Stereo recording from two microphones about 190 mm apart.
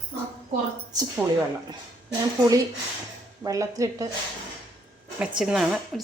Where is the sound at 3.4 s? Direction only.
15° right (ahead or behind).